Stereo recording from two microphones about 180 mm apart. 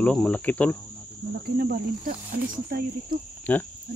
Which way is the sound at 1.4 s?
60° right (ahead or behind).